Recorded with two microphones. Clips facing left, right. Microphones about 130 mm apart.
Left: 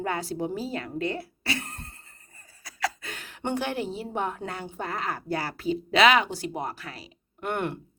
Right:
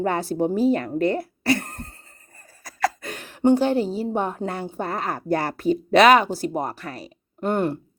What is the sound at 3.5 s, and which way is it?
A woman's voice, 30° right (ahead or behind).